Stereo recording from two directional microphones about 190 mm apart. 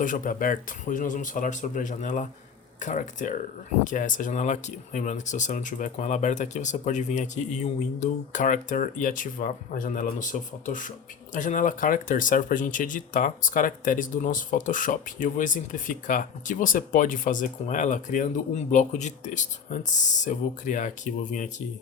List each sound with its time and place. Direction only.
0.0 s speech: 45° left (ahead or behind)